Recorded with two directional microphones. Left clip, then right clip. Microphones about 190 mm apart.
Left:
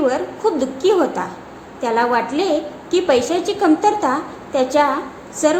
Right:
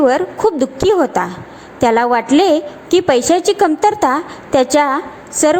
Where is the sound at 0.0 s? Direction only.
40° right (ahead or behind).